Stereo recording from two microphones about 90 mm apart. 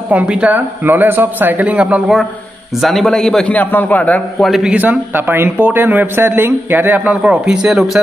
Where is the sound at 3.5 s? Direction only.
20° left (ahead or behind).